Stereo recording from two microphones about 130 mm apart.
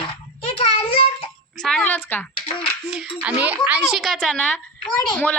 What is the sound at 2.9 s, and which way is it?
Speech, 5° right (ahead or behind).